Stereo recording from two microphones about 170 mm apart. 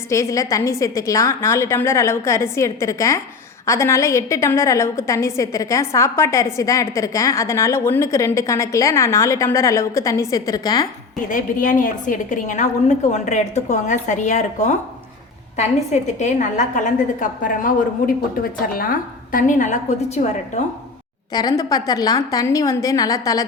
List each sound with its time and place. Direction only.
0.1 s a woman's voice: 15° left (ahead or behind)
11.3 s a woman's voice: 50° left (ahead or behind)
21.3 s a woman's voice: 20° left (ahead or behind)